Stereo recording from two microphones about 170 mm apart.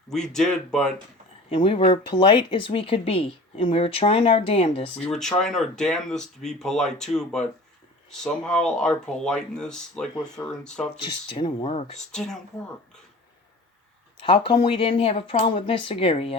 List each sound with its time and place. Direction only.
0.1 s speech: 5° left (ahead or behind)
1.5 s speech: 30° left (ahead or behind)
4.9 s speech: 5° left (ahead or behind)
11.0 s speech: 30° left (ahead or behind)
11.9 s speech: 5° left (ahead or behind)
14.2 s speech: 30° left (ahead or behind)